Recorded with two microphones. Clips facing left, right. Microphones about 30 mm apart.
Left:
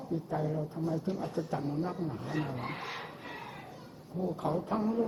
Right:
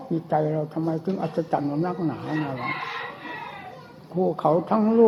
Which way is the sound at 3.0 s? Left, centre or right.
Right.